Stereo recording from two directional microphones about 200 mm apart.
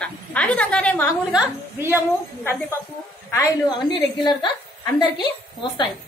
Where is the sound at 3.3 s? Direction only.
15° left (ahead or behind).